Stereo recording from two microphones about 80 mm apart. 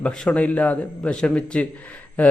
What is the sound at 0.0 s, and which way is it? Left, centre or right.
A man's voice, centre.